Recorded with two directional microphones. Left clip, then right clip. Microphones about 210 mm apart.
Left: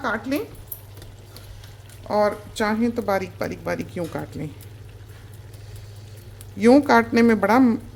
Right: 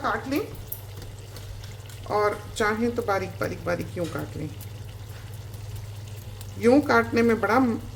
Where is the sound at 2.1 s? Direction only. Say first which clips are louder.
Left 3 dB; 45° left (ahead or behind).